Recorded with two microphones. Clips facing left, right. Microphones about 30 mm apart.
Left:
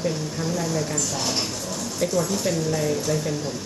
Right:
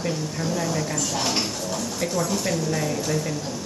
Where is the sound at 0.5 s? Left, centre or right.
Centre.